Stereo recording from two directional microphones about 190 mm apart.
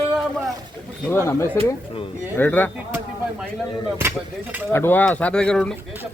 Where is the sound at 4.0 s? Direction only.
10° right (ahead or behind).